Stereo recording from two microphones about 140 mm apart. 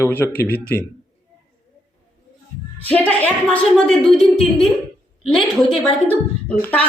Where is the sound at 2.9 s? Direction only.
10° left (ahead or behind).